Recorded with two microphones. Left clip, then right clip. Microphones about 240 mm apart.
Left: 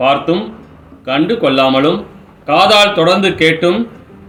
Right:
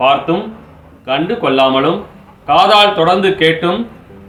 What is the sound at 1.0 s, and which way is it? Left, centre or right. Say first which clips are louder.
A man's voice: left 2 dB; centre.